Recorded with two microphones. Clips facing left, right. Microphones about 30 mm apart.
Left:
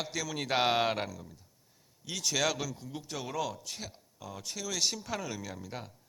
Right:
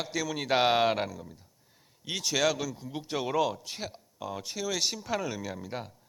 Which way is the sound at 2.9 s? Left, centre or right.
Right.